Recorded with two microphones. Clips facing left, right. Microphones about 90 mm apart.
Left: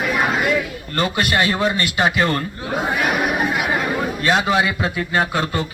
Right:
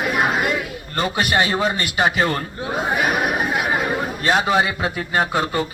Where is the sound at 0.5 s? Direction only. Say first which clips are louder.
Left 3 dB; 20° right (ahead or behind).